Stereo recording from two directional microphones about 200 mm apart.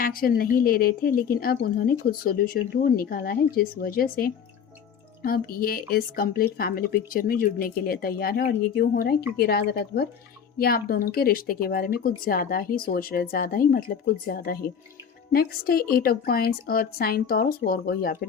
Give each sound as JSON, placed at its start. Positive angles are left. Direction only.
{"t": 0.0, "sound": "a woman's voice", "side_deg": 45}